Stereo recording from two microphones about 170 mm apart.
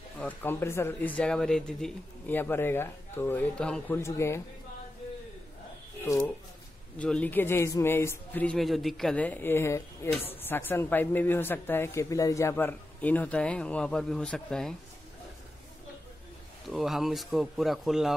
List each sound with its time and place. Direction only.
0.2 s a man's voice: 10° left (ahead or behind)
4.0 s a man's voice: 15° left (ahead or behind)
6.0 s a man's voice: 15° left (ahead or behind)
7.0 s a man's voice: 5° left (ahead or behind)
16.6 s speech: centre (ahead or behind)